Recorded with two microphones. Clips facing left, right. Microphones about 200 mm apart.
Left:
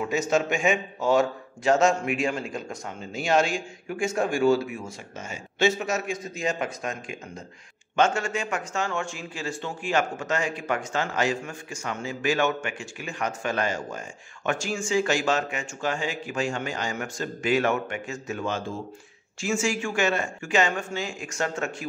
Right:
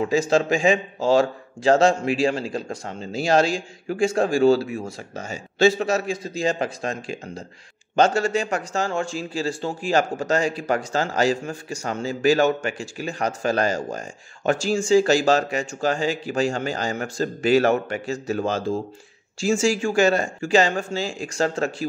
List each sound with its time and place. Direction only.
0.0 s a man's voice: 30° right (ahead or behind)